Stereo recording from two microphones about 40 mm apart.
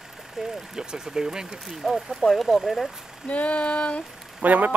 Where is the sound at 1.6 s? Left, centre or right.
Centre.